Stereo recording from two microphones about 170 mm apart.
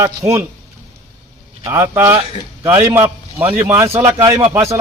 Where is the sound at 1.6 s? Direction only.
15° right (ahead or behind).